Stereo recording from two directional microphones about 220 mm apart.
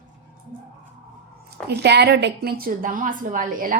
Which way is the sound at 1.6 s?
50° right (ahead or behind).